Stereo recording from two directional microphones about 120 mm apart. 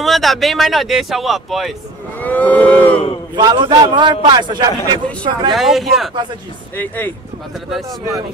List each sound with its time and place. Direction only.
0.0 s speech: centre (ahead or behind)
2.1 s wild animals: 15° left (ahead or behind)
3.3 s a man's voice: 40° right (ahead or behind)
5.5 s speech: centre (ahead or behind)